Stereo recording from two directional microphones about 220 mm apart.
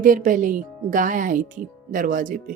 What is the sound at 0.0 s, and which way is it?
Speech, 40° right (ahead or behind).